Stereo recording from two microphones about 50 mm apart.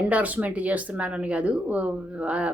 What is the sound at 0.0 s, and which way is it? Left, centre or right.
Speech, right.